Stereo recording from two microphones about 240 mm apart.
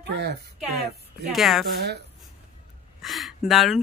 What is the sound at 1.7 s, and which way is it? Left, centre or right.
Speech, right.